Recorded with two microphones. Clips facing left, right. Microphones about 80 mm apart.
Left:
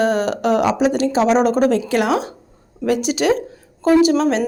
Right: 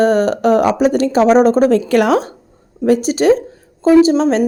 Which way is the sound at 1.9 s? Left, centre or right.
Right.